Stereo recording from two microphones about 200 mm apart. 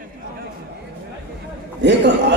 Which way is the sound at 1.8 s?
60° right (ahead or behind).